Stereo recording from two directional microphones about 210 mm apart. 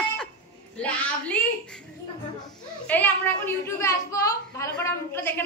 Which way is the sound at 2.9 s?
10° left (ahead or behind).